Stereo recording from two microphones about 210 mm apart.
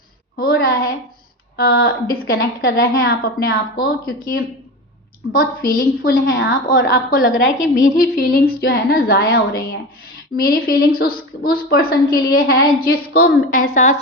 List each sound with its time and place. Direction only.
0.3 s a woman's voice: 45° left (ahead or behind)